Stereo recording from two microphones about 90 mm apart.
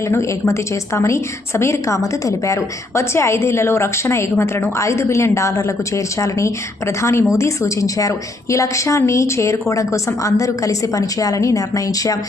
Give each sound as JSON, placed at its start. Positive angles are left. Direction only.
{"t": 0.1, "sound": "a woman's voice", "side_deg": 30}